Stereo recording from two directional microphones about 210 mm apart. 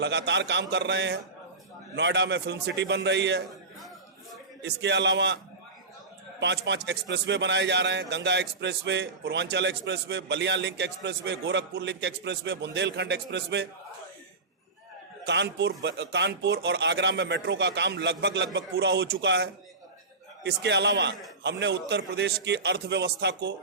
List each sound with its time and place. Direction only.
0.0 s a man's voice: 55° right (ahead or behind)
3.8 s a sound: centre (ahead or behind)
4.6 s a man's voice: 55° right (ahead or behind)
6.4 s a man's voice: 55° right (ahead or behind)
15.3 s a man's voice: 55° right (ahead or behind)